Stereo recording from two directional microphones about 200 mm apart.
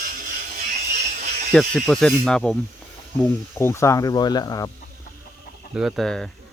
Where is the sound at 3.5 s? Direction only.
15° left (ahead or behind).